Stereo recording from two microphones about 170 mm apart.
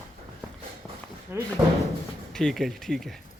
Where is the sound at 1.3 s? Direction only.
10° right (ahead or behind).